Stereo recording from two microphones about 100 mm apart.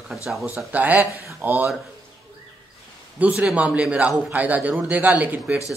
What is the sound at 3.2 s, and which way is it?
A man's voice, 10° right (ahead or behind).